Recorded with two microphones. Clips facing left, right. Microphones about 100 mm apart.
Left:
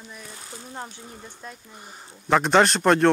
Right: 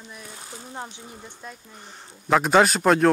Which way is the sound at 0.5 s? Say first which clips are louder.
Right 1 dB; 5° right (ahead or behind).